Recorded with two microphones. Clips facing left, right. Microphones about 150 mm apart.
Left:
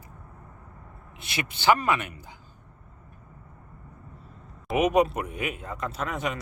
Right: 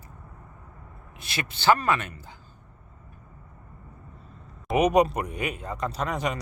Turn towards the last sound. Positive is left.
turn(degrees=0)  # may be behind; listen again after turning